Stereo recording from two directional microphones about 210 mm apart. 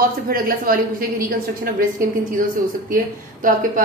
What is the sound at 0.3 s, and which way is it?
Speech, 45° right (ahead or behind).